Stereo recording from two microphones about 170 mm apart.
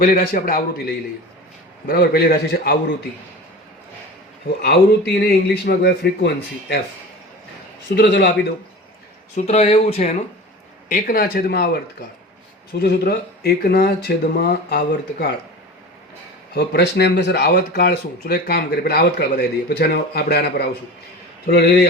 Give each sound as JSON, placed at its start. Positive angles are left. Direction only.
{"t": 0.0, "sound": "speech", "side_deg": 55}
{"t": 1.9, "sound": "speech", "side_deg": 65}
{"t": 4.6, "sound": "speech", "side_deg": 70}
{"t": 7.9, "sound": "speech", "side_deg": 80}
{"t": 9.3, "sound": "speech", "side_deg": 40}
{"t": 10.8, "sound": "speech", "side_deg": 55}
{"t": 12.8, "sound": "speech", "side_deg": 70}
{"t": 16.6, "sound": "speech", "side_deg": 80}